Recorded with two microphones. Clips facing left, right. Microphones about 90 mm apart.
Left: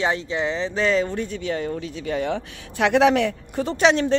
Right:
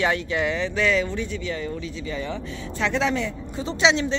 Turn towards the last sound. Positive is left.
turn(degrees=50)  # may be behind; listen again after turning